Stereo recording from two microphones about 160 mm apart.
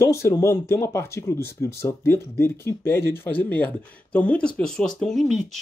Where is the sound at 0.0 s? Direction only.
20° left (ahead or behind).